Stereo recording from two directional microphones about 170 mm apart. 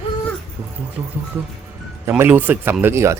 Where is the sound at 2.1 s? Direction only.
10° right (ahead or behind).